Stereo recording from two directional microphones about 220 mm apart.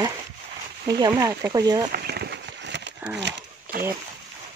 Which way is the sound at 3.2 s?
50° right (ahead or behind).